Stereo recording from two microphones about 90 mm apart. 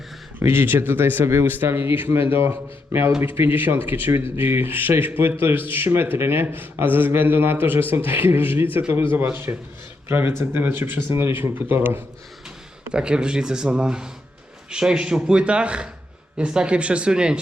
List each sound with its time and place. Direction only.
0.3 s speech: 25° right (ahead or behind)
12.9 s speech: 10° right (ahead or behind)